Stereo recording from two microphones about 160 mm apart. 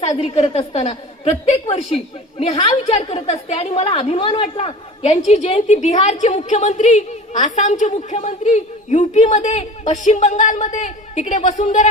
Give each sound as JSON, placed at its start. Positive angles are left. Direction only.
{"t": 0.0, "sound": "a woman's voice", "side_deg": 40}